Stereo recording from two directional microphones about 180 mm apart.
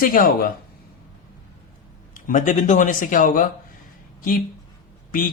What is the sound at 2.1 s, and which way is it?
Speech, 45° left (ahead or behind).